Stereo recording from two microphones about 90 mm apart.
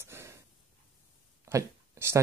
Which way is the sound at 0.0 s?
30° right (ahead or behind).